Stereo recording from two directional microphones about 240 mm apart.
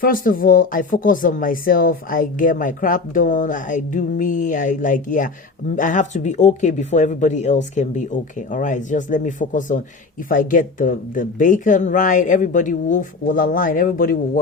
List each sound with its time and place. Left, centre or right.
0.0 s speech: left